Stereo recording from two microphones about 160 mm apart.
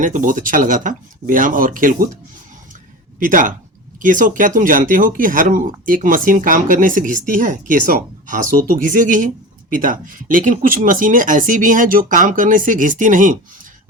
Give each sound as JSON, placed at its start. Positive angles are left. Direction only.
{"t": 0.0, "sound": "speech", "side_deg": -55}
{"t": 3.2, "sound": "speech", "side_deg": -55}